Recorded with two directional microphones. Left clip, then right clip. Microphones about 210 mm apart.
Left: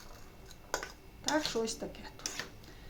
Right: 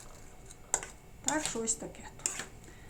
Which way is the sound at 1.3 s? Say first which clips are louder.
Left 1 dB; 15° left (ahead or behind).